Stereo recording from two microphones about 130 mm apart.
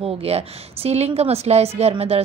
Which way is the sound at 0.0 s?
50° right (ahead or behind).